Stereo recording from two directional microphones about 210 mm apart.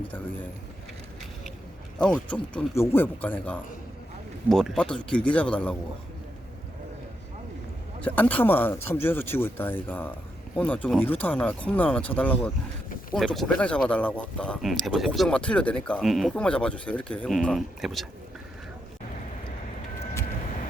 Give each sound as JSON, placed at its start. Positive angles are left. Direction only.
{"t": 2.0, "sound": "speech", "side_deg": 5}
{"t": 8.0, "sound": "speech", "side_deg": 10}